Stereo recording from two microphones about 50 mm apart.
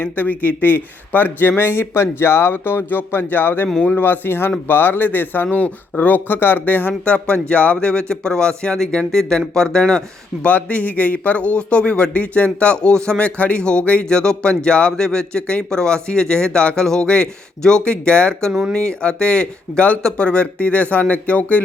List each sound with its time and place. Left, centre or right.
0.0 s speech: left
7.0 s a man's voice: left
10.4 s a man's voice: left